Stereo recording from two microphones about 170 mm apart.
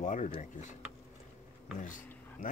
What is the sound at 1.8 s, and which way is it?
Speech, 50° left (ahead or behind).